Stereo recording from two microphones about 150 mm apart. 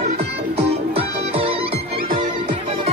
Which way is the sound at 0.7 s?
40° right (ahead or behind).